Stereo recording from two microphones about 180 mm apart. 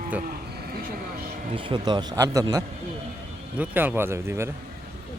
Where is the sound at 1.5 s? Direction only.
25° right (ahead or behind).